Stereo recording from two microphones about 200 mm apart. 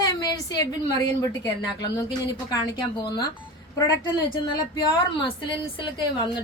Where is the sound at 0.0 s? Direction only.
20° left (ahead or behind).